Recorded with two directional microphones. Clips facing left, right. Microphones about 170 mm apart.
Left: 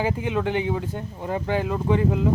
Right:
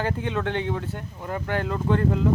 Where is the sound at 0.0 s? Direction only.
10° left (ahead or behind).